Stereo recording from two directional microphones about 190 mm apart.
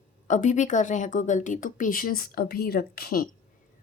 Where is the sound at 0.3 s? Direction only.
40° left (ahead or behind).